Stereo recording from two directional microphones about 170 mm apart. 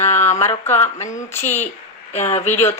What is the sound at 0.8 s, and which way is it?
Speech, 45° left (ahead or behind).